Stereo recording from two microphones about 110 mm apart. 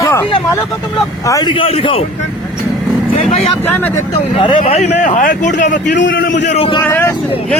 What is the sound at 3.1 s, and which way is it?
Vehicle, 65° left (ahead or behind).